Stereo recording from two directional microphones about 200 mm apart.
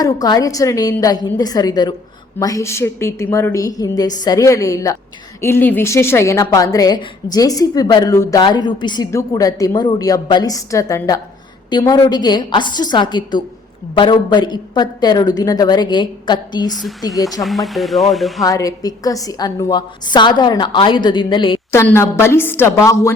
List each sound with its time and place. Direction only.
0.0 s a woman's voice: 20° left (ahead or behind)
17.4 s speech: centre (ahead or behind)
18.4 s a woman's voice: 15° left (ahead or behind)
21.7 s a woman's voice: 15° left (ahead or behind)